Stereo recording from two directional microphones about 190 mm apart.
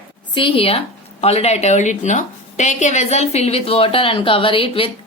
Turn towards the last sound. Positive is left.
turn(degrees=30)  # may be behind; listen again after turning